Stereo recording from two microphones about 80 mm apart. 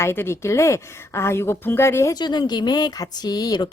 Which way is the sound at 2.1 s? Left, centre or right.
Left.